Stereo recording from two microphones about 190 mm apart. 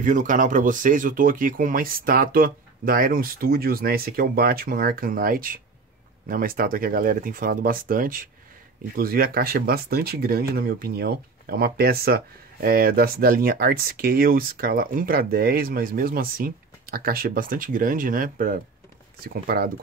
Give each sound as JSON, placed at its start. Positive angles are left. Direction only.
{"t": 0.0, "sound": "speech", "side_deg": -45}